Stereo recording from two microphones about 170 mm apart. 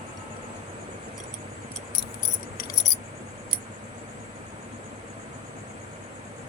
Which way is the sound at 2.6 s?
75° left (ahead or behind).